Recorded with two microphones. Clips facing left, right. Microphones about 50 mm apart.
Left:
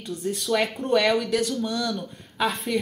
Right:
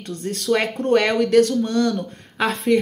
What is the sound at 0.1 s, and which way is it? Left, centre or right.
Speech, right.